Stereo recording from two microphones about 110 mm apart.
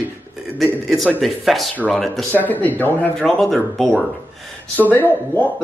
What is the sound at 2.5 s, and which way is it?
Speech, 15° left (ahead or behind).